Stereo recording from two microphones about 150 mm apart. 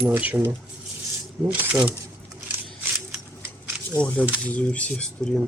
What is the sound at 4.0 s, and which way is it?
Speech, 10° left (ahead or behind).